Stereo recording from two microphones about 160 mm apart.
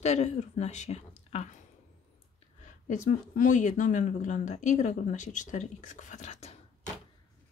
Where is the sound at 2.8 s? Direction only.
55° left (ahead or behind).